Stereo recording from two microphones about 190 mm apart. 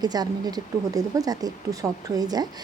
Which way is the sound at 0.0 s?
20° right (ahead or behind).